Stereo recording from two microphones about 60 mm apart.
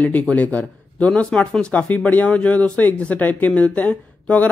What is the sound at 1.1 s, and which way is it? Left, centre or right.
Speech, centre.